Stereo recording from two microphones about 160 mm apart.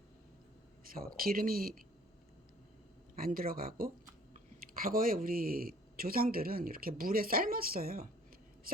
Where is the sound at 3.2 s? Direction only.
65° right (ahead or behind).